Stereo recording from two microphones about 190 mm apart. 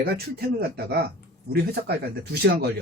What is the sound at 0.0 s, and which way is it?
A man's voice, 55° right (ahead or behind).